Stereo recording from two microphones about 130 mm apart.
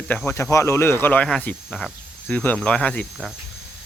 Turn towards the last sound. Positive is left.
turn(degrees=5)  # may be behind; listen again after turning